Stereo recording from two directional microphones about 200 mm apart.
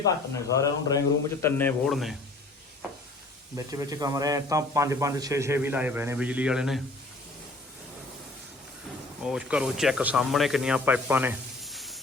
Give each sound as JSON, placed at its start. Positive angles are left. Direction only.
{"t": 0.1, "sound": "a man's voice", "side_deg": 15}
{"t": 3.5, "sound": "a man's voice", "side_deg": -15}
{"t": 9.2, "sound": "speech", "side_deg": -5}